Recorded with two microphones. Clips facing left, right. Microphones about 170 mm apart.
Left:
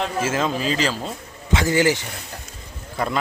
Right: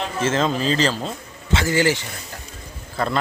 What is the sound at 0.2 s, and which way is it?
Speech, 10° left (ahead or behind).